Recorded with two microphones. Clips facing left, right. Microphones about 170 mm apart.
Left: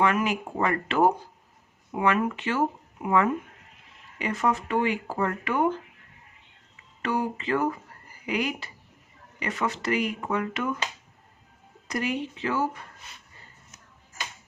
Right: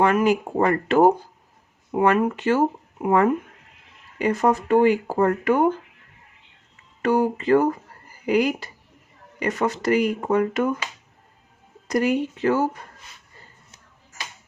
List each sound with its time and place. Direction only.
0.0 s speech: 40° right (ahead or behind)
7.0 s speech: 40° right (ahead or behind)
11.9 s speech: 40° right (ahead or behind)